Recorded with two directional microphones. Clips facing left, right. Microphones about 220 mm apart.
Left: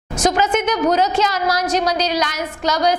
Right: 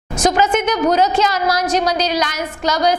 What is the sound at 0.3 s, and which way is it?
A woman's voice, 15° right (ahead or behind).